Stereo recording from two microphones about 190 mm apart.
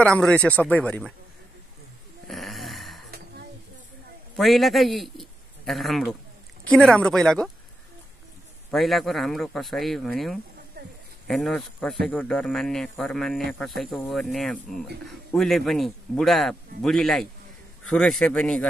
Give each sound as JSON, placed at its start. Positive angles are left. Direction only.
{"t": 0.0, "sound": "speech", "side_deg": 5}
{"t": 2.2, "sound": "a sound", "side_deg": 0}
{"t": 4.4, "sound": "a man's voice", "side_deg": 0}
{"t": 8.6, "sound": "speech", "side_deg": 0}
{"t": 10.8, "sound": "a sound", "side_deg": -55}
{"t": 11.2, "sound": "speech", "side_deg": 0}